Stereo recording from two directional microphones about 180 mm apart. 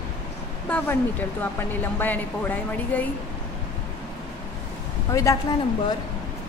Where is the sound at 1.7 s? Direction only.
10° left (ahead or behind).